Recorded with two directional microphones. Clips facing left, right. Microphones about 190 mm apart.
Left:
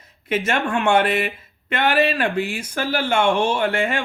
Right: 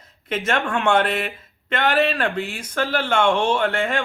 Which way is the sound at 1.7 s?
15° left (ahead or behind).